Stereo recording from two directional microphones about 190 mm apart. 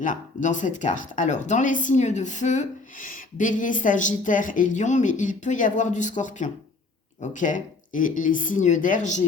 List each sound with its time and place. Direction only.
0.0 s speech: 45° left (ahead or behind)